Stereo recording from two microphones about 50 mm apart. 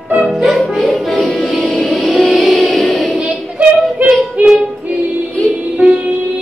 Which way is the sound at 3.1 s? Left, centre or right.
Right.